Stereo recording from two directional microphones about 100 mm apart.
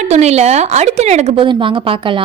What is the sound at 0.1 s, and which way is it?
Speech, 90° right.